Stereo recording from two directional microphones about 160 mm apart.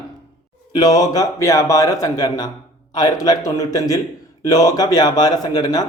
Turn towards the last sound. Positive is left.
turn(degrees=25)  # may be behind; listen again after turning